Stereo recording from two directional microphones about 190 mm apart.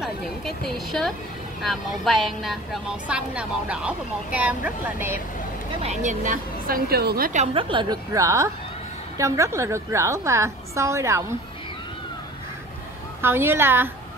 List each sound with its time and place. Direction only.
0.0 s speech: centre (ahead or behind)
5.8 s a woman's voice: 40° right (ahead or behind)
7.5 s a woman's voice: 25° right (ahead or behind)
13.2 s a woman's voice: 10° right (ahead or behind)